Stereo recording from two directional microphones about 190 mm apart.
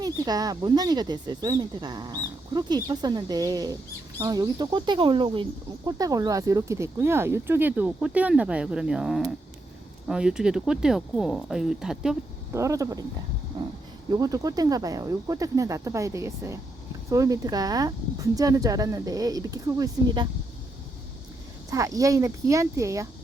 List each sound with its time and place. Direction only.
0.0 s speech: 20° right (ahead or behind); by 12.1 s 5° right (ahead or behind)
12.5 s speech: 15° right (ahead or behind)
14.1 s speech: 20° right (ahead or behind)
21.7 s speech: 15° right (ahead or behind)